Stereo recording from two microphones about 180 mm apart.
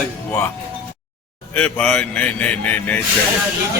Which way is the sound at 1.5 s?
5° left (ahead or behind).